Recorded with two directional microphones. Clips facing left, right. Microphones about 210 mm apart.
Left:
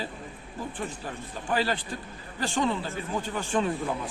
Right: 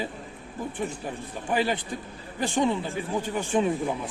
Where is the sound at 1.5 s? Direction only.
15° right (ahead or behind).